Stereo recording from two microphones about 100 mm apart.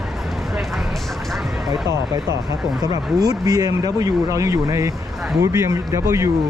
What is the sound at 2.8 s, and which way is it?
Speech, 40° right (ahead or behind).